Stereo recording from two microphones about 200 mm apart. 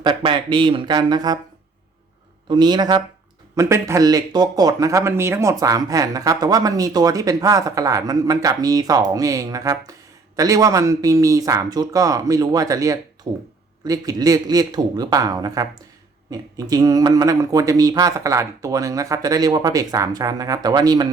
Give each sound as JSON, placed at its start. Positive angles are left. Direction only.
{"t": 0.0, "sound": "a man's voice", "side_deg": -25}
{"t": 2.5, "sound": "a man's voice", "side_deg": -20}